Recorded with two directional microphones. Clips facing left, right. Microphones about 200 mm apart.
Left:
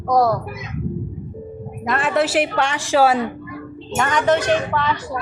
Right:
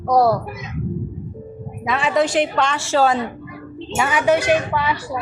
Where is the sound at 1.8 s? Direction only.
Centre (ahead or behind).